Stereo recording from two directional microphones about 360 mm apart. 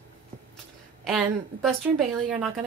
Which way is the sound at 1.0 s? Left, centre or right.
Centre.